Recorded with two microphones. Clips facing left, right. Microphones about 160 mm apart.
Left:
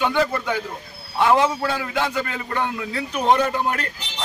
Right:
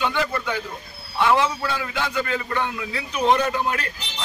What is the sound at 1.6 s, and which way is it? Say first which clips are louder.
A man's voice: left 3 dB; 45° left (ahead or behind).